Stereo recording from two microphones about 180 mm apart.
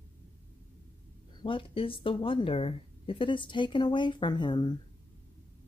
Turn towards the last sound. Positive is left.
turn(degrees=25)  # may be behind; listen again after turning